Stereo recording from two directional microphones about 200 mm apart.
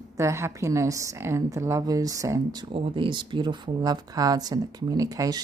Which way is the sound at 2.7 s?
30° right (ahead or behind).